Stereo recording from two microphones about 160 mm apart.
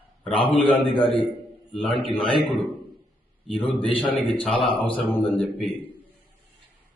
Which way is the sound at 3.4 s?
Centre (ahead or behind).